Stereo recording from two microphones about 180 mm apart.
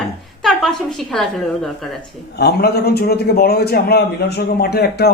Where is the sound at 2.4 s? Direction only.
65° left (ahead or behind).